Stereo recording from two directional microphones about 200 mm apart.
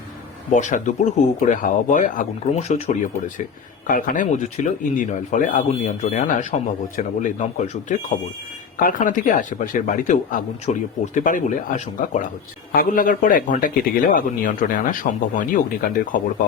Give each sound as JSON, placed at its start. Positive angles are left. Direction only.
{"t": 0.5, "sound": "a man's voice", "side_deg": 40}